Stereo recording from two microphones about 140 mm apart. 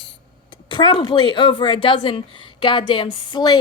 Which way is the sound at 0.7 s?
35° left (ahead or behind).